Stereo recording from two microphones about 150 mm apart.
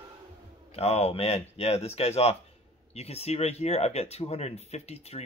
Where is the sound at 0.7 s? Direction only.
45° left (ahead or behind).